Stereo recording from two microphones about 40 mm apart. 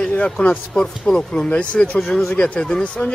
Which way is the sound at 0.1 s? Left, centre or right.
Left.